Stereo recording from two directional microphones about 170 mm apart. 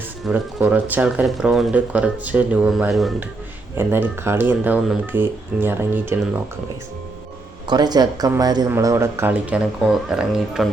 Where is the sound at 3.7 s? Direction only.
15° right (ahead or behind).